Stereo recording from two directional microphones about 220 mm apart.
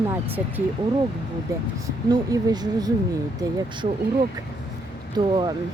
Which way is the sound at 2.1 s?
20° right (ahead or behind).